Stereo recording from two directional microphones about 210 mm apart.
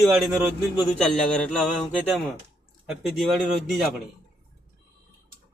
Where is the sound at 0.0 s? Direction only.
Centre (ahead or behind).